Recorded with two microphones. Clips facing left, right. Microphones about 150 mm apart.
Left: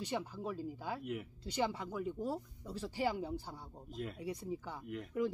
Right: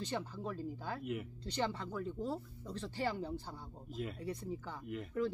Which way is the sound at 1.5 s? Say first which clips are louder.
Left 1 dB; 10° left (ahead or behind).